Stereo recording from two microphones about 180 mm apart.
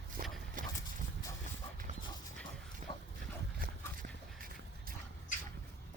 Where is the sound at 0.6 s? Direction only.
50° right (ahead or behind).